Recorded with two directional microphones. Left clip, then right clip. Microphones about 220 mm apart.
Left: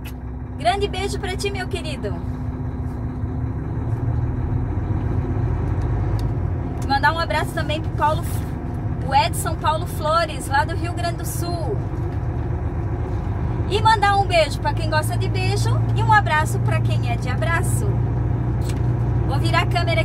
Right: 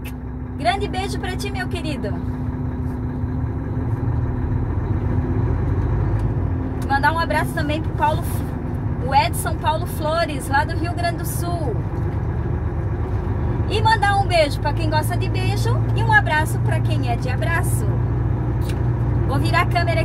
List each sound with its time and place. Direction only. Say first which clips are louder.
0.7 s speech: left 1 dB; 5° right (ahead or behind)
6.9 s speech: even; 5° right (ahead or behind)
9.1 s speech: even; 5° right (ahead or behind)
13.7 s speech: left 1 dB; 5° right (ahead or behind)
19.4 s speech: right 1 dB; 5° right (ahead or behind)